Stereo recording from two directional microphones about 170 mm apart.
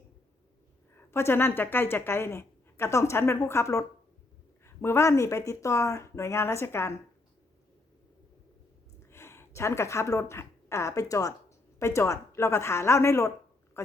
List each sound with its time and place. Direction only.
0.9 s a woman's voice: 15° left (ahead or behind)
9.0 s speech: 15° left (ahead or behind)